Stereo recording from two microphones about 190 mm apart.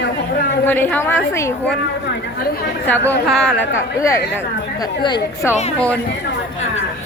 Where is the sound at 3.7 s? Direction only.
15° left (ahead or behind).